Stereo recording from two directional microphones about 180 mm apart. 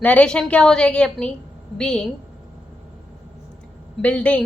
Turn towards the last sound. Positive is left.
turn(degrees=5)  # may be behind; listen again after turning